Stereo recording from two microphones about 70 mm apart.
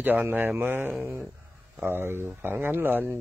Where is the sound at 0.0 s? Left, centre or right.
Right.